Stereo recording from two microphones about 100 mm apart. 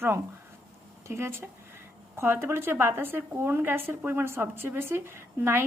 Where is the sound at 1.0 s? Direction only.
25° right (ahead or behind).